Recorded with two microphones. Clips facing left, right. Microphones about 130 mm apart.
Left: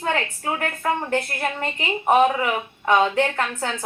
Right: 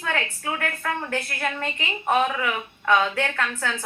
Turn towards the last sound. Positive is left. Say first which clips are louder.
# left 2 dB
turn(degrees=35)  # may be behind; listen again after turning